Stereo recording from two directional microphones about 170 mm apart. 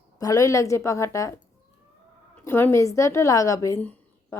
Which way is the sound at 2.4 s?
15° left (ahead or behind).